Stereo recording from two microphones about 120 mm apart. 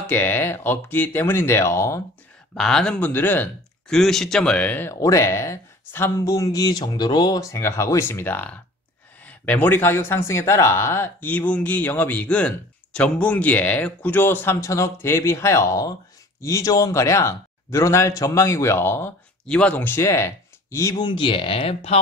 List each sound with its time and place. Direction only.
0.0 s speech: 15° left (ahead or behind)
2.5 s speech: 5° left (ahead or behind)
3.9 s speech: 5° left (ahead or behind)
5.0 s speech: 25° left (ahead or behind)
19.4 s speech: 10° left (ahead or behind)
21.0 s speech: 45° left (ahead or behind)